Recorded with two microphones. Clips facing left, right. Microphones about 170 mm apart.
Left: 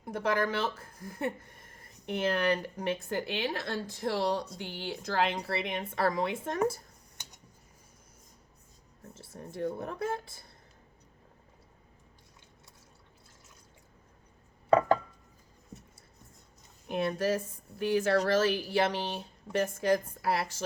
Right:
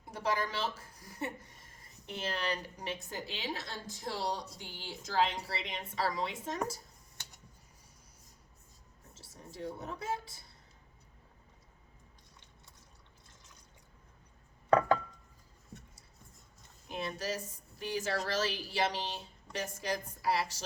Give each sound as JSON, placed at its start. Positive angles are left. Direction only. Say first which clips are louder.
{"t": 0.0, "sound": "speech", "louder": "left 5 dB", "side_deg": 55}
{"t": 9.1, "sound": "a woman's voice", "louder": "left 7 dB", "side_deg": 55}
{"t": 16.9, "sound": "a woman's voice", "louder": "left 8 dB", "side_deg": 55}